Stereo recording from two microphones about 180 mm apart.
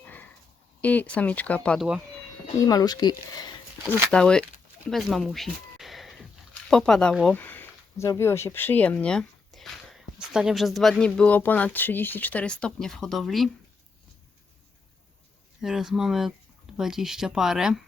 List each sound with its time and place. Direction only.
0.0 s a sound: 10° left (ahead or behind)
0.8 s speech: 10° left (ahead or behind)
2.6 s speech: 20° left (ahead or behind)
4.1 s speech: 5° left (ahead or behind)
4.9 s a sound: centre (ahead or behind)
7.3 s speech: 10° left (ahead or behind)
15.6 s speech: centre (ahead or behind)